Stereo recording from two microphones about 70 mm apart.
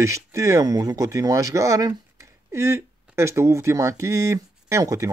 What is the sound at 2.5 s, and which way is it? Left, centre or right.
Speech, right.